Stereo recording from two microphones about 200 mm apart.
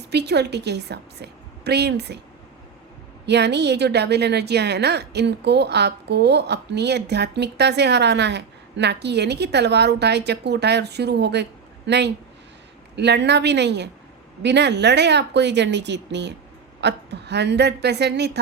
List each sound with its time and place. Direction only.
0.1 s a woman's voice: 55° right (ahead or behind)
3.2 s a woman's voice: 55° right (ahead or behind)